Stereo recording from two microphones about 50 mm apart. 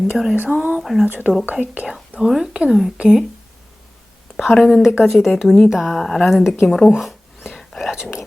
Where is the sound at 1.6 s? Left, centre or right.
Right.